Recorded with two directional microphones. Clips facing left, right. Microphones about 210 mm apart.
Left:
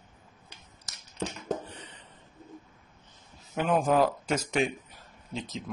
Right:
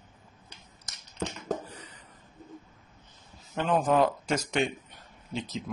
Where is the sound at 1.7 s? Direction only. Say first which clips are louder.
Left 1 dB; 30° left (ahead or behind).